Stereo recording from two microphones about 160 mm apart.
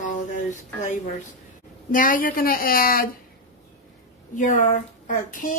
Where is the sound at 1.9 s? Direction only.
60° left (ahead or behind).